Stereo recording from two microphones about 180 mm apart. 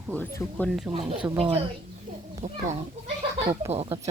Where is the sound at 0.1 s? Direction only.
10° left (ahead or behind).